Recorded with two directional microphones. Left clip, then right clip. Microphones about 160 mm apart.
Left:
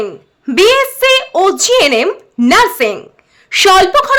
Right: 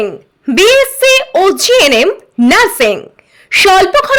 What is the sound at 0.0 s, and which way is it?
A woman's voice, 20° right (ahead or behind).